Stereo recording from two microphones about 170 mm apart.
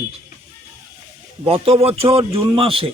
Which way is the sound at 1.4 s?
35° right (ahead or behind).